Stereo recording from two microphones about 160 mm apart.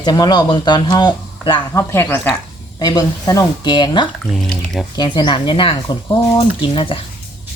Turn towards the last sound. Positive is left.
turn(degrees=35)  # may be behind; listen again after turning